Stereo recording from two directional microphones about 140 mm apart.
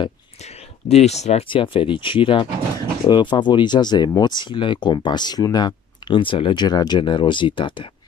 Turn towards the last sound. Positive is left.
turn(degrees=35)  # may be behind; listen again after turning